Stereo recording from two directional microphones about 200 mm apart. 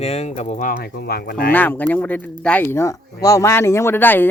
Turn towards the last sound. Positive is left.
turn(degrees=10)  # may be behind; listen again after turning